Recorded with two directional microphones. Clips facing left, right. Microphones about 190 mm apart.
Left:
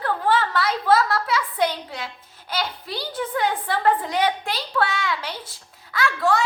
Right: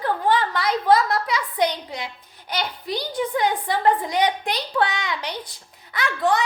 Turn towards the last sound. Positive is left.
turn(degrees=-20)  # may be behind; listen again after turning